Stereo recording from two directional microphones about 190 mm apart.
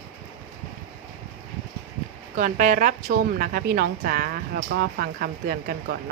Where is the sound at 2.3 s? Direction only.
45° right (ahead or behind).